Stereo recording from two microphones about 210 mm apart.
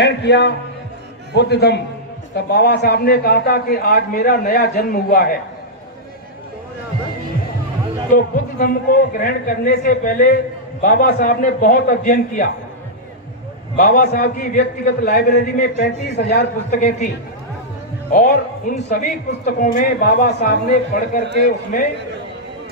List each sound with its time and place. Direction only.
0.0 s a man's voice: 55° left (ahead or behind)
8.1 s a man's voice: 40° left (ahead or behind)
13.7 s a man's voice: 40° left (ahead or behind)
18.7 s a man's voice: 40° left (ahead or behind)
20.1 s a man's voice: 55° left (ahead or behind)